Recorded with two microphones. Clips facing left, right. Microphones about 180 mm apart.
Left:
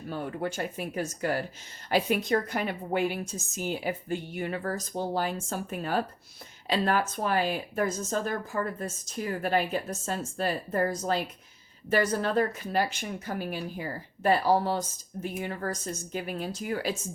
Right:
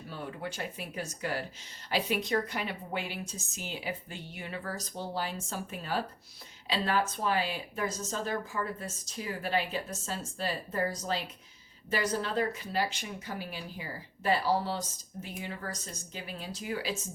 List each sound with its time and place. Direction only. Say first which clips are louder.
0.1 s speech: left 7 dB; 50° left (ahead or behind)